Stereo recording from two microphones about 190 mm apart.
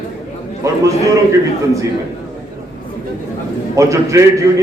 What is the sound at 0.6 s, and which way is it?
Speech, 15° right (ahead or behind).